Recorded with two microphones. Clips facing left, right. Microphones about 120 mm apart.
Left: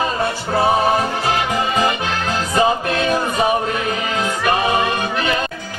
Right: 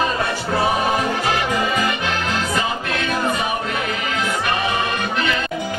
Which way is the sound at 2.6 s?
35° left (ahead or behind).